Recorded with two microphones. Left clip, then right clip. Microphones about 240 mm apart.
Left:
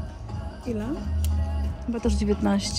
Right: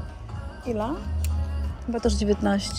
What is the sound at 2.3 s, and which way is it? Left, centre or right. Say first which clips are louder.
Speech: right 1 dB; centre.